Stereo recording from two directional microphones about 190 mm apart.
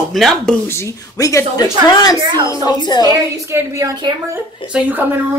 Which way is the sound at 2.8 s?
25° left (ahead or behind).